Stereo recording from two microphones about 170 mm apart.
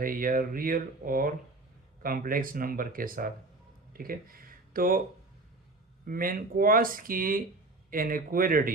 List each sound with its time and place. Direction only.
0.0 s speech: 55° right (ahead or behind)
6.1 s speech: 55° right (ahead or behind)